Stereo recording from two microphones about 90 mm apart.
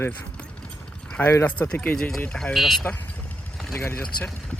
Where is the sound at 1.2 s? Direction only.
25° left (ahead or behind).